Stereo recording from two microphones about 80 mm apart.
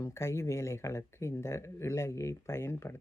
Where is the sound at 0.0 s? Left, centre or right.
Left.